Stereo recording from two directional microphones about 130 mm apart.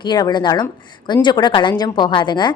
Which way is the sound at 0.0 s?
35° left (ahead or behind).